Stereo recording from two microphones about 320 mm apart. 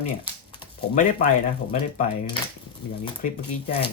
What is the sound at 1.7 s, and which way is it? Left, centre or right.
Speech, left.